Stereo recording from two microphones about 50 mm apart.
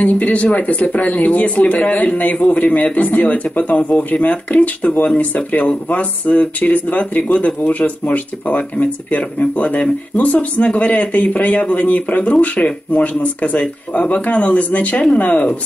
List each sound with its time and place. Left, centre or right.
0.0 s speech: left